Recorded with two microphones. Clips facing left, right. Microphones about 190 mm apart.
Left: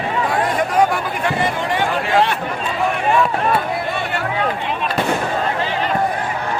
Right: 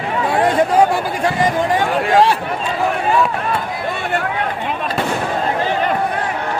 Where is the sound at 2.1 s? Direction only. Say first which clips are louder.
Right 4 dB; 40° right (ahead or behind).